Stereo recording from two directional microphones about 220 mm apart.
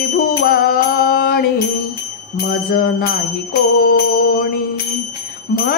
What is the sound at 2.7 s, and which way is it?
Bicycle bell, 45° left (ahead or behind).